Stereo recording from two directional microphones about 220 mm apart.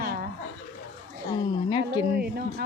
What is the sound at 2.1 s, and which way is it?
Speech, 45° right (ahead or behind).